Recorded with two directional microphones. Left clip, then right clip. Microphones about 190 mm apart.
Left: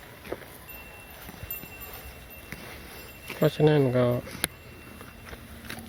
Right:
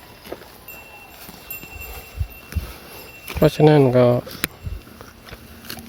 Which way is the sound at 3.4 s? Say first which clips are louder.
Right 8 dB; 30° right (ahead or behind).